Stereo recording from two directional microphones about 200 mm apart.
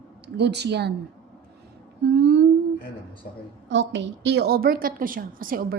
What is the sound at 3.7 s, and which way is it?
A woman's voice, 65° right (ahead or behind).